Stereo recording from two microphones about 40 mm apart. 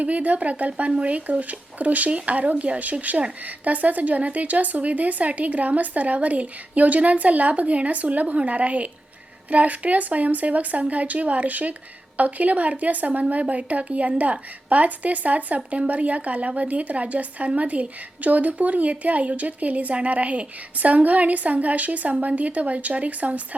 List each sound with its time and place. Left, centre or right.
0.0 s a woman's voice: right